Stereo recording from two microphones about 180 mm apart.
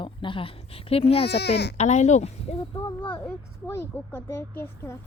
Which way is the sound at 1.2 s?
65° left (ahead or behind).